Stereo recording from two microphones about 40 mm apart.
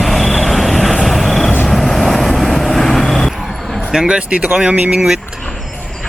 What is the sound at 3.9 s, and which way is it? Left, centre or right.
Speech, centre.